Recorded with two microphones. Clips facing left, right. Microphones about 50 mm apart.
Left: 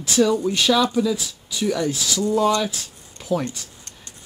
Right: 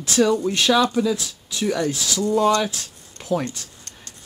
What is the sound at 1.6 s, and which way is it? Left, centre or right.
Speech, centre.